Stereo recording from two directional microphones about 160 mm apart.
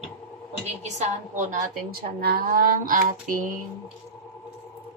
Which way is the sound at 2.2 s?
65° right (ahead or behind).